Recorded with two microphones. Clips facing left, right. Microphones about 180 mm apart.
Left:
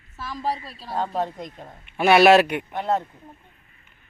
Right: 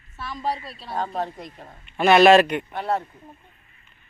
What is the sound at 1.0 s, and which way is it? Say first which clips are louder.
Speech: left 2 dB; 20° left (ahead or behind).